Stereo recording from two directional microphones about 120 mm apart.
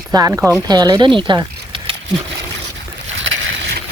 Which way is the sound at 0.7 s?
35° right (ahead or behind).